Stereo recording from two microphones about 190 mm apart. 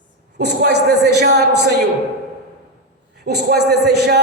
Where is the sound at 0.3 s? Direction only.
60° right (ahead or behind).